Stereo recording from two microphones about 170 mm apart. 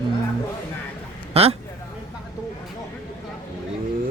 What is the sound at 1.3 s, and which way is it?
Speech, 35° right (ahead or behind).